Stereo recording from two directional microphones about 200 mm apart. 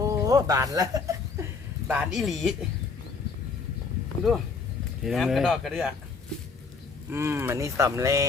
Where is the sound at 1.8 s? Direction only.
5° right (ahead or behind).